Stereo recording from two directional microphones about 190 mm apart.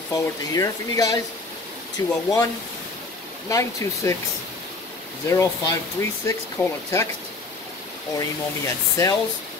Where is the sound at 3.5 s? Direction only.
15° left (ahead or behind).